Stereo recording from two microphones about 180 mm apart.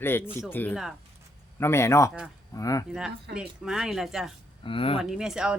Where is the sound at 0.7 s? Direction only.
Centre (ahead or behind).